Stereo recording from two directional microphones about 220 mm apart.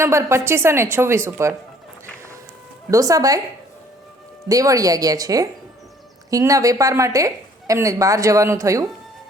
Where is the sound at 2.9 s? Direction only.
15° right (ahead or behind).